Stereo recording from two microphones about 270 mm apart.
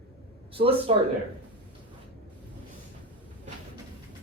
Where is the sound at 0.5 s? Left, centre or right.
Centre.